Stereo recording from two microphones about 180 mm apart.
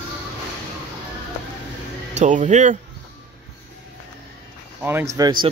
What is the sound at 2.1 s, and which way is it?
Speech, 40° right (ahead or behind).